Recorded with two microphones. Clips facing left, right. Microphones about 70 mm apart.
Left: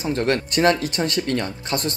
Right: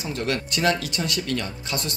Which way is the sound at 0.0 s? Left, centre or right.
Left.